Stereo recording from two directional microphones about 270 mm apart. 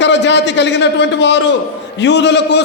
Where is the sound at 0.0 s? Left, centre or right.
Left.